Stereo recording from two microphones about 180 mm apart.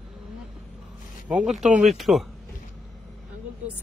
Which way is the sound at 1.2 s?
5° right (ahead or behind).